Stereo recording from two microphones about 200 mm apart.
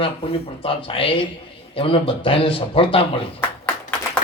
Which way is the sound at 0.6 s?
25° left (ahead or behind).